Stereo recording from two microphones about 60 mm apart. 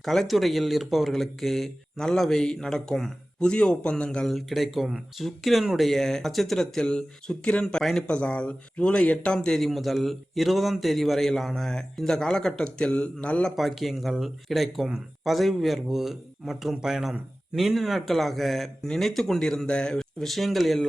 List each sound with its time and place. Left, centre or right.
0.0 s a man's voice: centre
4.3 s a man's voice: centre
8.0 s speech: centre
9.6 s a man's voice: centre; by 13.5 s left
13.6 s a man's voice: centre